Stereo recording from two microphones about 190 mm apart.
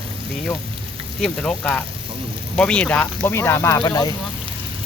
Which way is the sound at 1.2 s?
5° left (ahead or behind).